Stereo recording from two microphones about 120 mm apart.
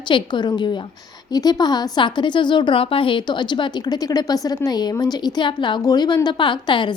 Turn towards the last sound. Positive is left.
turn(degrees=40)  # may be behind; listen again after turning